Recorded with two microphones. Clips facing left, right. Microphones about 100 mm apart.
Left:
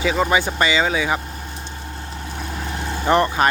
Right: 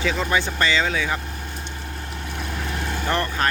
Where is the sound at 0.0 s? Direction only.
10° left (ahead or behind).